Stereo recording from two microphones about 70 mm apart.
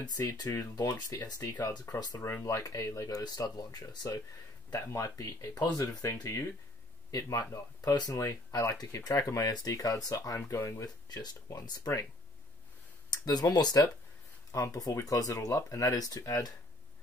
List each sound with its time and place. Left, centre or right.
0.2 s speech: left
4.6 s speech: left
7.1 s speech: left
8.1 s speech: left
11.1 s speech: left
13.1 s speech: left
14.5 s speech: left